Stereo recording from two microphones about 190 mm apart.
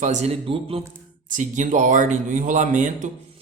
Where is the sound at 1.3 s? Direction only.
40° right (ahead or behind).